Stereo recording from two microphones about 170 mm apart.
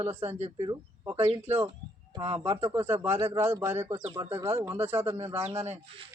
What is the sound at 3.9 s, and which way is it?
Speech, 30° right (ahead or behind).